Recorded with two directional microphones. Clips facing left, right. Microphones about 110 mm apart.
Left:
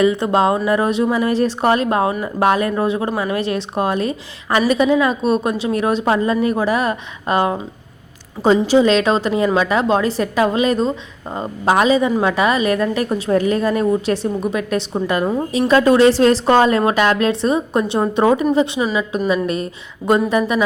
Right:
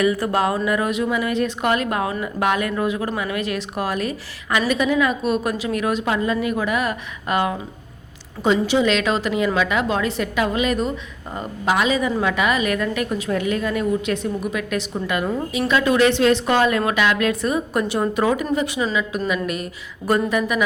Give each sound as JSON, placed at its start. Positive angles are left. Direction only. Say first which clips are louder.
{"t": 0.0, "sound": "a woman's voice", "louder": "left 4 dB", "side_deg": 25}